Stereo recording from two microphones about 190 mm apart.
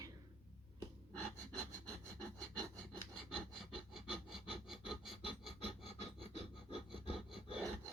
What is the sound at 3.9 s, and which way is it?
Filing, centre (ahead or behind).